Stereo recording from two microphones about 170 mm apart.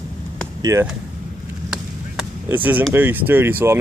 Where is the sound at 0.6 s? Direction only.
20° right (ahead or behind).